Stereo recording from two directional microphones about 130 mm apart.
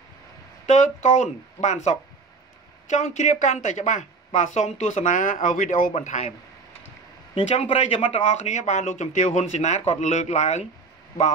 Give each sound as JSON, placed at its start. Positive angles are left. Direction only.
{"t": 0.7, "sound": "speech", "side_deg": 60}
{"t": 5.9, "sound": "speech", "side_deg": 65}
{"t": 7.3, "sound": "speech", "side_deg": 45}